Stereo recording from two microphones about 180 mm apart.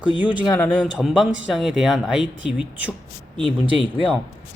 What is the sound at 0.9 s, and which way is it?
Speech, 5° right (ahead or behind).